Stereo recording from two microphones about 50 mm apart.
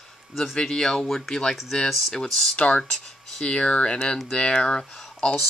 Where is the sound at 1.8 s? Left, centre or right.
Centre.